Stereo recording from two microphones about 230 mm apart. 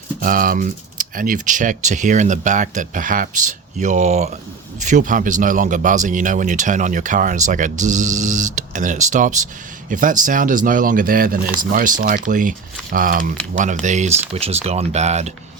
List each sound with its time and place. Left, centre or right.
0.2 s speech: right